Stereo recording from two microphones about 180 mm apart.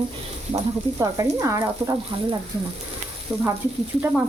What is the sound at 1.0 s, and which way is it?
Speech, 20° right (ahead or behind).